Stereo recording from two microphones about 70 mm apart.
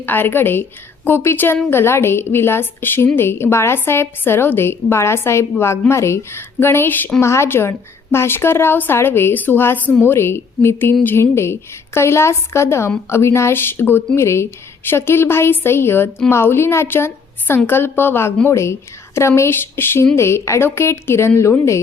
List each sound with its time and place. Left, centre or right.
0.0 s a woman's voice: left
7.2 s a woman's voice: left